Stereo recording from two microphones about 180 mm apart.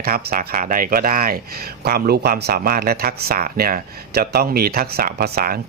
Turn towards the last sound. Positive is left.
turn(degrees=-60)  # may be behind; listen again after turning